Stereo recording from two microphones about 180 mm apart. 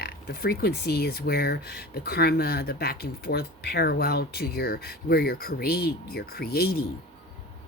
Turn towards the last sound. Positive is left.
turn(degrees=60)  # may be behind; listen again after turning